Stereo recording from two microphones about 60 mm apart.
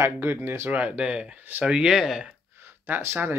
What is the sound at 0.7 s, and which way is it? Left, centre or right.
Speech, right.